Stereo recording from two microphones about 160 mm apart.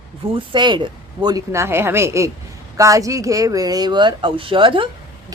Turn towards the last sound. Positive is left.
turn(degrees=-30)  # may be behind; listen again after turning